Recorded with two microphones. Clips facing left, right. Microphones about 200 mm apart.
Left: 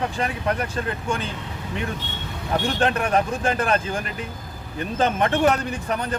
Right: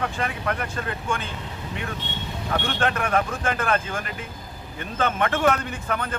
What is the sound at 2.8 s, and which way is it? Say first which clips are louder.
Speech: left 1 dB; 35° left (ahead or behind).